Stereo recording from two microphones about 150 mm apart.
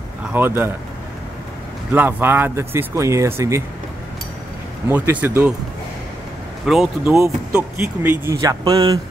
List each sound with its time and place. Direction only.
0.2 s speech: 15° right (ahead or behind)
1.9 s speech: 10° right (ahead or behind)
4.8 s speech: 15° right (ahead or behind)
6.6 s speech: centre (ahead or behind)
7.2 s speech: 20° right (ahead or behind)